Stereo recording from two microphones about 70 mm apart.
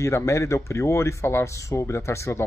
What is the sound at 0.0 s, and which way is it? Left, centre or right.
Speech, left.